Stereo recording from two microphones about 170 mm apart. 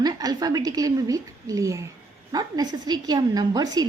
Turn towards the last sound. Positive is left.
turn(degrees=-25)  # may be behind; listen again after turning